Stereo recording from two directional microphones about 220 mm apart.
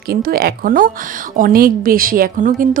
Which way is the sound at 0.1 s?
45° right (ahead or behind).